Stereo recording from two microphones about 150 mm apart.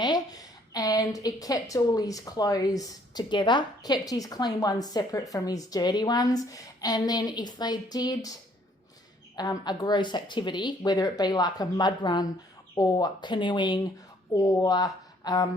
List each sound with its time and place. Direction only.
0.0 s a woman's voice: 25° left (ahead or behind)
9.3 s a woman's voice: 25° left (ahead or behind)